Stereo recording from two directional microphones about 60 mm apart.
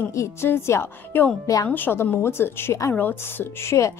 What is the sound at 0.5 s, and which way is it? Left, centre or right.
Speech, left.